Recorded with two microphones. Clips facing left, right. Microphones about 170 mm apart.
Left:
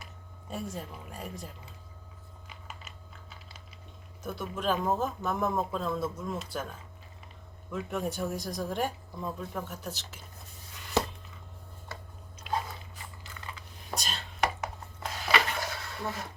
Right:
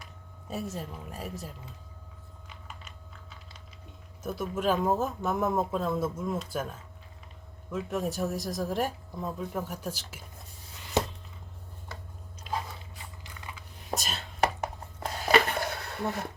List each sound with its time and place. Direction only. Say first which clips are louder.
0.5 s speech: right 2 dB; 5° right (ahead or behind)
2.5 s typing: even; 5° left (ahead or behind)
4.3 s speech: right 3 dB; 5° right (ahead or behind)
7.7 s speech: right 2 dB; centre (ahead or behind)
13.2 s biting: even; 15° right (ahead or behind)
14.0 s speech: right 1 dB; centre (ahead or behind)
14.4 s a sound: right 3 dB; 35° right (ahead or behind); by 16.2 s 60° right (ahead or behind)